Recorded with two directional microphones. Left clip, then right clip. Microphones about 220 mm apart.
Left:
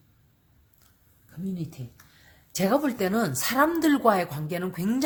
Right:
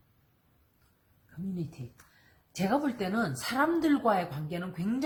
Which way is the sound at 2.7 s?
50° left (ahead or behind).